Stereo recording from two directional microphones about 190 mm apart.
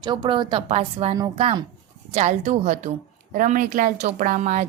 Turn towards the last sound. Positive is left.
turn(degrees=-40)  # may be behind; listen again after turning